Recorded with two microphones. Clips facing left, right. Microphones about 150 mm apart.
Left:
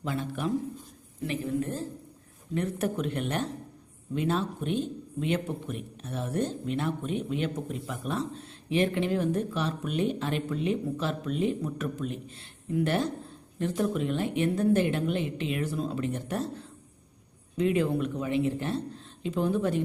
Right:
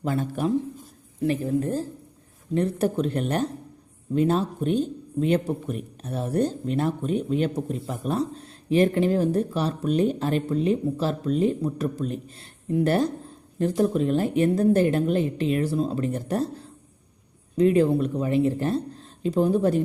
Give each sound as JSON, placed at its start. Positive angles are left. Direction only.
{"t": 0.0, "sound": "speech", "side_deg": -45}